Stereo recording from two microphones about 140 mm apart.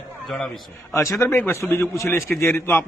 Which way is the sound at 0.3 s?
Centre (ahead or behind).